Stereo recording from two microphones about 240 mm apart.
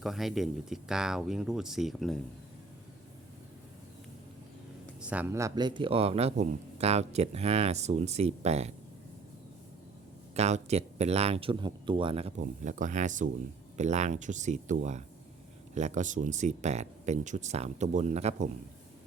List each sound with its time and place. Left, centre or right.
0.0 s speech: centre
4.9 s a man's voice: centre; by 8.7 s right
10.3 s a man's voice: right